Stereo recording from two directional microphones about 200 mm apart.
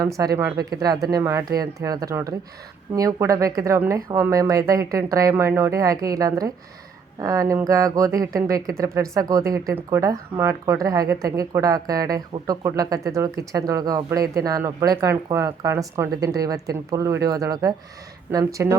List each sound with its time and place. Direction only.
0.2 s speech: 15° right (ahead or behind)